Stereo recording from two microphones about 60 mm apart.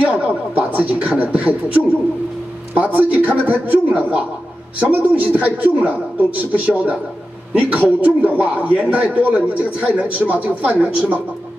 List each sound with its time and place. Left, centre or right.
0.0 s beatboxing: right
2.7 s a man's voice: right